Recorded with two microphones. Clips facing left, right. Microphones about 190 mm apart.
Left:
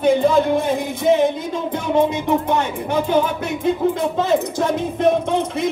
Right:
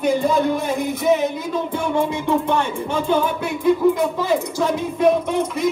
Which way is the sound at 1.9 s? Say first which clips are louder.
Left 4 dB; 20° left (ahead or behind).